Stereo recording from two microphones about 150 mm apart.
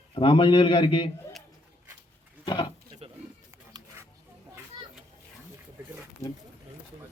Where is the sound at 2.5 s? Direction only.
30° left (ahead or behind).